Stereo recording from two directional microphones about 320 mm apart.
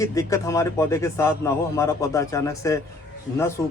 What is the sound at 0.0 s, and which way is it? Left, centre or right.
Speech, centre.